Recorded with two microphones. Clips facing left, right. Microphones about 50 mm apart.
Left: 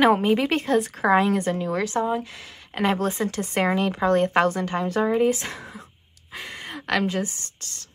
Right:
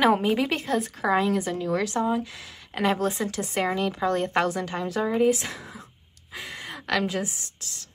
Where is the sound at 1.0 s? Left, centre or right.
Centre.